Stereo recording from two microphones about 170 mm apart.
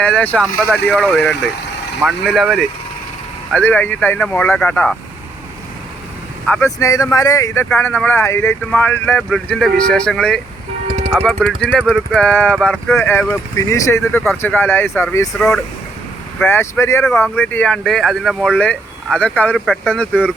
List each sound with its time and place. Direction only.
0.0 s speech: 10° left (ahead or behind)
6.7 s speech: 20° left (ahead or behind); by 13.0 s centre (ahead or behind)
13.0 s speech: 10° left (ahead or behind)
15.4 s speech: 5° left (ahead or behind)
16.4 s speech: 15° left (ahead or behind)